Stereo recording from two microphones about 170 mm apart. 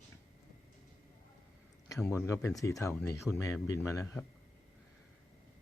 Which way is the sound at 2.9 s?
5° left (ahead or behind).